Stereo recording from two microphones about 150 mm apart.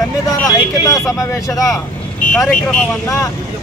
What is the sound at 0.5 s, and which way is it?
Speech, 25° left (ahead or behind).